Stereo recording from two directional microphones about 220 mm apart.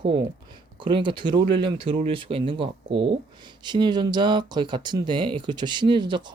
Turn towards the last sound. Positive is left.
turn(degrees=-20)  # may be behind; listen again after turning